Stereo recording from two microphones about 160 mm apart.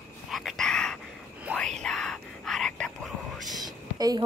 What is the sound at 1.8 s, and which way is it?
Whispering, 5° left (ahead or behind).